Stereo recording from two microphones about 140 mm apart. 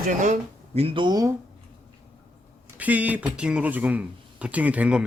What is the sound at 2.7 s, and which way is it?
Speech, 10° right (ahead or behind).